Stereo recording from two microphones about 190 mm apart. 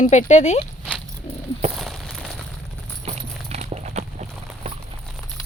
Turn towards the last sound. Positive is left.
turn(degrees=-35)  # may be behind; listen again after turning